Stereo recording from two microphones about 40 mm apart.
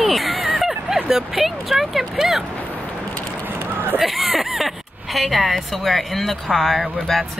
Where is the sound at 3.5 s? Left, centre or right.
Right.